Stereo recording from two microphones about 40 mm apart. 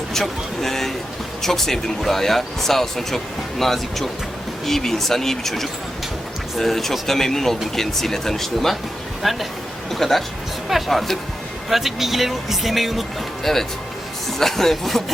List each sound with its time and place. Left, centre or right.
0.1 s speech: centre
9.2 s speech: centre